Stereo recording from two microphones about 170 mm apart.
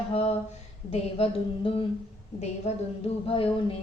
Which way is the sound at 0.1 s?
35° left (ahead or behind).